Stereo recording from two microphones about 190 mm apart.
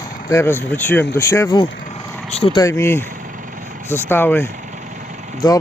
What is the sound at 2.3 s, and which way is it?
Speech, 30° left (ahead or behind).